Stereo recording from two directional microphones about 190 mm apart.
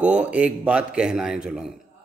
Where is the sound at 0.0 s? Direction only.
5° right (ahead or behind).